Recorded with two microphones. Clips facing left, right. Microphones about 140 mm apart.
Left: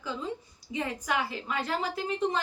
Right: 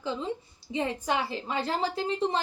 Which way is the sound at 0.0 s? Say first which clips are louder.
Right 3 dB; 25° right (ahead or behind).